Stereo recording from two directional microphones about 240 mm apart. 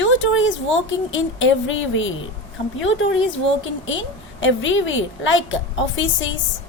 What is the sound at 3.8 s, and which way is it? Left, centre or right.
A woman's voice, left.